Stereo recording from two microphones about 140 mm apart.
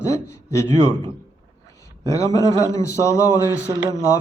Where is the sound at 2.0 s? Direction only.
25° left (ahead or behind).